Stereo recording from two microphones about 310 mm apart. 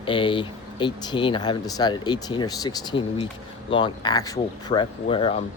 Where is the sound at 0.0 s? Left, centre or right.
Centre.